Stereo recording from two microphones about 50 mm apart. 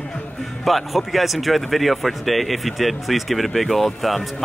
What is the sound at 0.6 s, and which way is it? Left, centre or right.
Speech, centre.